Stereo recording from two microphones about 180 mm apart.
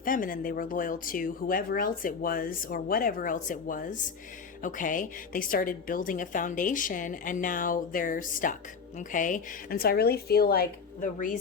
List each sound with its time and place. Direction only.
0.0 s speech: 50° left (ahead or behind)